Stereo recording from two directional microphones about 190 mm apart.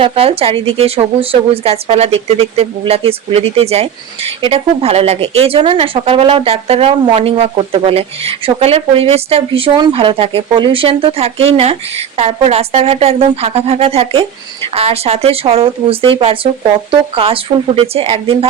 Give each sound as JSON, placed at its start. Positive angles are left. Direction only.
{"t": 0.0, "sound": "speech", "side_deg": -30}